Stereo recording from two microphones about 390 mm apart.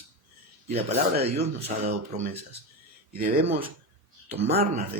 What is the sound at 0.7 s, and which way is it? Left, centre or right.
Speech, centre.